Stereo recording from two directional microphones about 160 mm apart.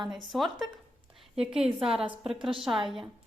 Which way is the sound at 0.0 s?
Centre (ahead or behind).